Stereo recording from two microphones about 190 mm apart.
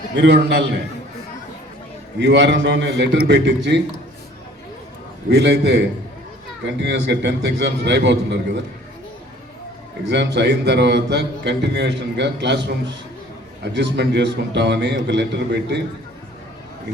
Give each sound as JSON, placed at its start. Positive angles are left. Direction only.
{"t": 0.2, "sound": "a man's voice", "side_deg": -60}
{"t": 2.1, "sound": "a man's voice", "side_deg": -65}
{"t": 5.3, "sound": "a man's voice", "side_deg": -65}
{"t": 10.1, "sound": "a man's voice", "side_deg": -65}